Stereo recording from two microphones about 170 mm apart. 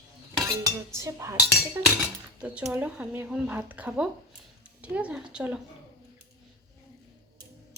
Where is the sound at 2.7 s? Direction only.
5° right (ahead or behind).